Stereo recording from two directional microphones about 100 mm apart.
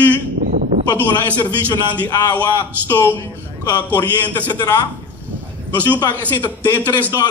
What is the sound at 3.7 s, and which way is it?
Speech, 45° left (ahead or behind).